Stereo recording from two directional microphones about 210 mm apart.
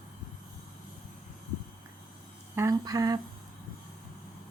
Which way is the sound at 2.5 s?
15° right (ahead or behind).